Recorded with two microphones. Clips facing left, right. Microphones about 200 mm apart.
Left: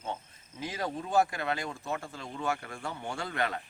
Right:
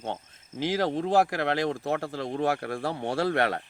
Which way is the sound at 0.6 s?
90° right.